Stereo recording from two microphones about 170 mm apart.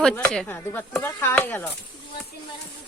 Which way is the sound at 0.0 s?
5° left (ahead or behind).